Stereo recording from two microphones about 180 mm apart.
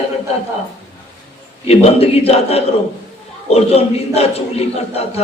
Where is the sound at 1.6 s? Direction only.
35° left (ahead or behind).